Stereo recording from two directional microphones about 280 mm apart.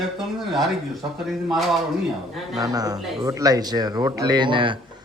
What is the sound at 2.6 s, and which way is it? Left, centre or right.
Speech, centre.